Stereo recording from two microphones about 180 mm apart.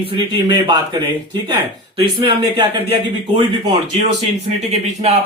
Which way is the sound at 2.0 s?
30° right (ahead or behind).